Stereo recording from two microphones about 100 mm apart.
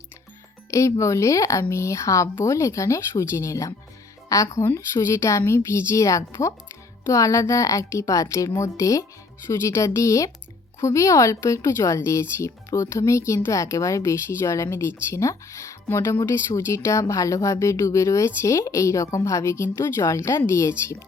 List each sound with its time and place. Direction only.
0.7 s speech: 30° left (ahead or behind)